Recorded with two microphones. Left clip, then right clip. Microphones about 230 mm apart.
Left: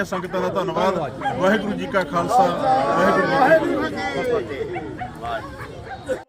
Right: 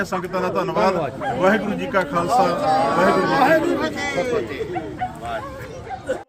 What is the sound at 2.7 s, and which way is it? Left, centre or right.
Speech, right.